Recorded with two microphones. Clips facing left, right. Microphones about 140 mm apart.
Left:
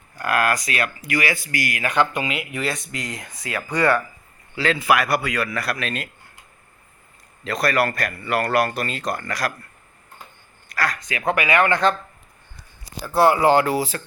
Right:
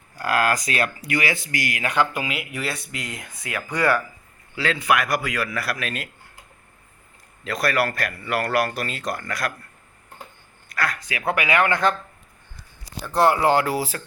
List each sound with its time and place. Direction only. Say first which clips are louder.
0.5 s speech: right 1 dB; 30° right (ahead or behind)
2.1 s speech: left 2 dB; 5° right (ahead or behind)
7.4 s speech: left 2 dB; centre (ahead or behind)
10.7 s a man's voice: left 2 dB; centre (ahead or behind)
13.0 s speech: left 2 dB; 5° left (ahead or behind)